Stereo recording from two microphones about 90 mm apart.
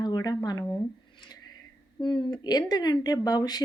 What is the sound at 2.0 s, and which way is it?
Speech, 60° left (ahead or behind).